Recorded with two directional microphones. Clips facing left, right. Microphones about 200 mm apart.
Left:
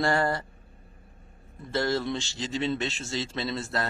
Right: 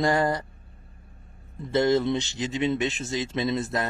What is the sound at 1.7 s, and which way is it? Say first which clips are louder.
Speech: right 6 dB; 20° right (ahead or behind).